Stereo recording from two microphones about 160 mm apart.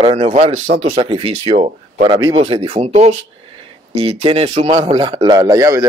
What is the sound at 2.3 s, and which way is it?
A man's voice, 35° right (ahead or behind).